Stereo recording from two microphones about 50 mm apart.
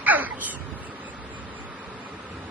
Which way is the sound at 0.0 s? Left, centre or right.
Right.